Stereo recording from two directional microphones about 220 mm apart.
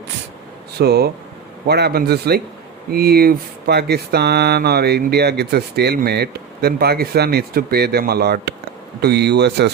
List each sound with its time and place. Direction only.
0.8 s speech: 45° right (ahead or behind)